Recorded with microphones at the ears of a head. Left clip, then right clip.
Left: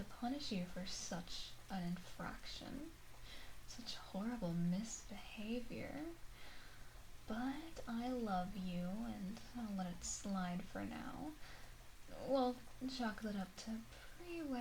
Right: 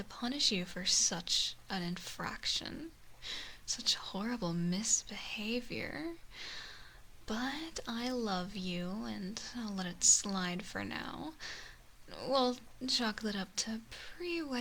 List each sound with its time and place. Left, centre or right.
0.1 s speech: right